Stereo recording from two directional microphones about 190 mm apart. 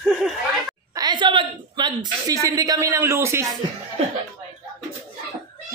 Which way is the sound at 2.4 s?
20° right (ahead or behind).